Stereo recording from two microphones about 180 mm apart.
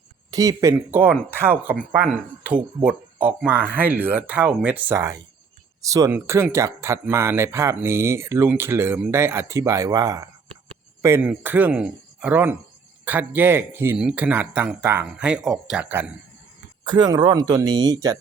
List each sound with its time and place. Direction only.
0.3 s speech: 20° right (ahead or behind)
16.8 s speech: 25° right (ahead or behind)